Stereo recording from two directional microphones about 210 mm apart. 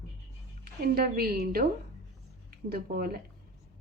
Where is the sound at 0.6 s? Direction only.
45° right (ahead or behind).